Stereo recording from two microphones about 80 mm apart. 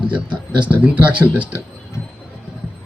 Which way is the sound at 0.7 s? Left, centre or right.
Centre.